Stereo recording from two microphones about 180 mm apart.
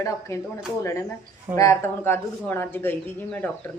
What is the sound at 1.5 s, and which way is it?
Speech, 15° left (ahead or behind).